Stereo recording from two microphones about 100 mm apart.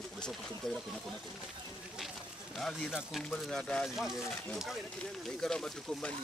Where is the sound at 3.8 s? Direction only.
5° right (ahead or behind).